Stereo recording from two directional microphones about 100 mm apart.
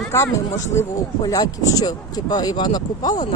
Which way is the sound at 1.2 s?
40° left (ahead or behind).